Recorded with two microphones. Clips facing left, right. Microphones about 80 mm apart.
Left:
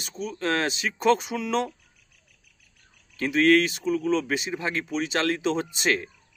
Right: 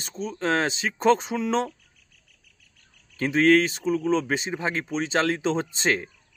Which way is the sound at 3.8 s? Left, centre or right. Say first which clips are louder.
Right 1 dB; right.